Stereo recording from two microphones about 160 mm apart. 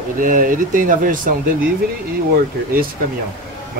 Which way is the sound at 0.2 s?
55° right (ahead or behind).